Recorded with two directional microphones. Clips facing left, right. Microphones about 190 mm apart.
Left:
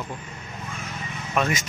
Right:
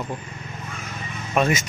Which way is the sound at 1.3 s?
25° right (ahead or behind).